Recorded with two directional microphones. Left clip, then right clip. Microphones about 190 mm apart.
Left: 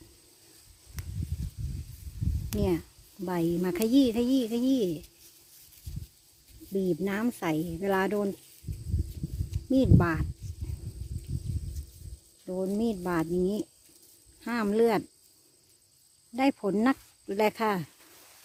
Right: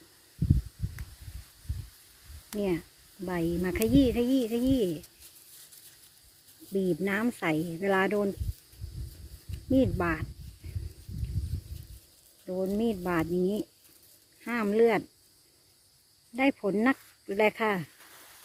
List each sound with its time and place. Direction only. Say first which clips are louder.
2.5 s speech: left 1 dB; 25° left (ahead or behind)
6.7 s speech: right 1 dB; 15° left (ahead or behind)
9.6 s speech: left 1 dB; 20° left (ahead or behind)
12.5 s speech: right 1 dB; 15° left (ahead or behind)
16.3 s speech: even; 20° left (ahead or behind)